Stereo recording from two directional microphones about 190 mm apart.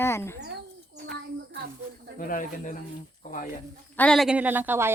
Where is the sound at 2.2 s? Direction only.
45° left (ahead or behind).